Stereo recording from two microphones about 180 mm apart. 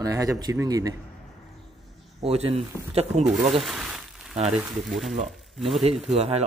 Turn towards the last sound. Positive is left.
turn(degrees=-35)  # may be behind; listen again after turning